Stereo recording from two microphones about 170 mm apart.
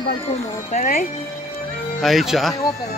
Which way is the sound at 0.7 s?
40° left (ahead or behind).